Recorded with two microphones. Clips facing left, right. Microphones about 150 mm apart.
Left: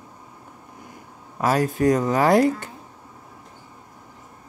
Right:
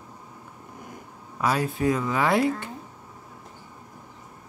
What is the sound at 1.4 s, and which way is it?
Speech, 45° left (ahead or behind).